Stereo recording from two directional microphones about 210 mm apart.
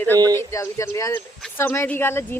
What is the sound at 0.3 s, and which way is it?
Speech, 15° left (ahead or behind).